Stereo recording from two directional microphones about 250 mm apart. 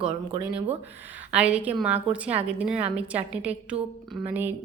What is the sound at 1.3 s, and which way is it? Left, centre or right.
A woman's voice, centre.